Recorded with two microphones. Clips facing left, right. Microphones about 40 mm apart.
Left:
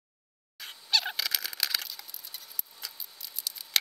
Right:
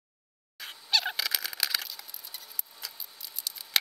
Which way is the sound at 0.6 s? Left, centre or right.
Centre.